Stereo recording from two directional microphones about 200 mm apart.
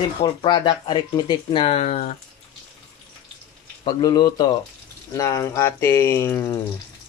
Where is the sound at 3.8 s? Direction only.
20° left (ahead or behind).